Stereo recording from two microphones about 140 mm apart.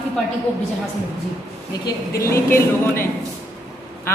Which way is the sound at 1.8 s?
20° left (ahead or behind).